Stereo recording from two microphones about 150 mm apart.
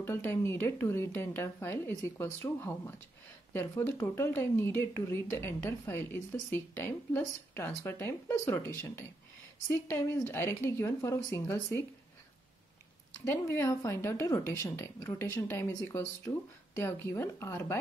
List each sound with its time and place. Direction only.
0.0 s speech: 15° left (ahead or behind)
13.2 s speech: 20° left (ahead or behind)